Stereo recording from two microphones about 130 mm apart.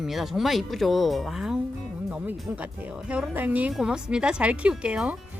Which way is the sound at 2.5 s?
15° right (ahead or behind).